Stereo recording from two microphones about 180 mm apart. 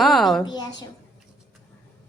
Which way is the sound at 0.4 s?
25° left (ahead or behind).